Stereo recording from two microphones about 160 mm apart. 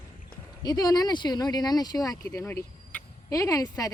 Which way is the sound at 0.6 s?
25° left (ahead or behind).